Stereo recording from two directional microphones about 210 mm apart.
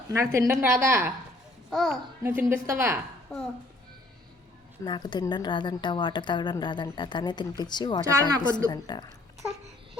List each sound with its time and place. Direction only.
0.1 s a woman's voice: 15° right (ahead or behind)
1.7 s a child's voice: centre (ahead or behind)
2.2 s a woman's voice: 10° right (ahead or behind)
3.3 s a child's voice: 5° left (ahead or behind)
4.9 s a woman's voice: 20° left (ahead or behind)